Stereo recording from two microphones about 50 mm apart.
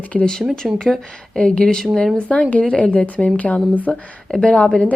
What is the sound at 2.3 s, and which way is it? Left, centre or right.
Speech, left.